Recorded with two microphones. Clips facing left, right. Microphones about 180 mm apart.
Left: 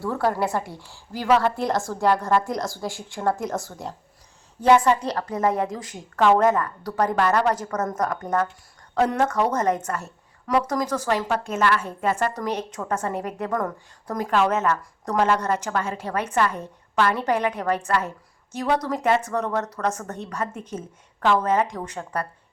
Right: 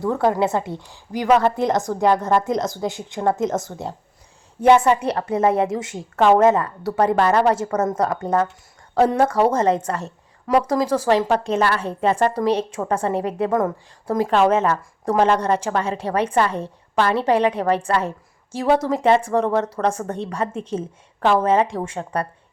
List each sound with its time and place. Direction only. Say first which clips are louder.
0.0 s a woman's voice: right 5 dB; 20° right (ahead or behind)